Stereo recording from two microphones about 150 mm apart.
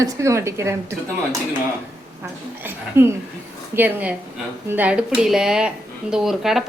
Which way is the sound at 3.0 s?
15° right (ahead or behind).